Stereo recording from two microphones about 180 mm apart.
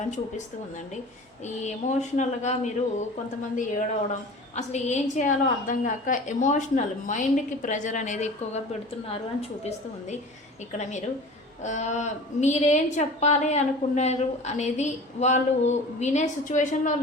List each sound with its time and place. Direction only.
1.6 s a woman's voice: 40° left (ahead or behind)